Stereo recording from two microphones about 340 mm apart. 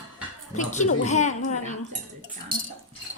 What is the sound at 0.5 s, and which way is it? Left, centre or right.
A woman's voice, left.